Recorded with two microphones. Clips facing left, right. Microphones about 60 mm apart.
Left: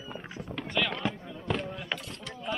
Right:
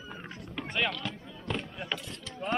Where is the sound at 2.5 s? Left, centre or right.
Right.